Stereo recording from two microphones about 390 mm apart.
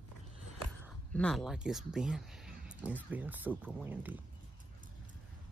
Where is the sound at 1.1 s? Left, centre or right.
Centre.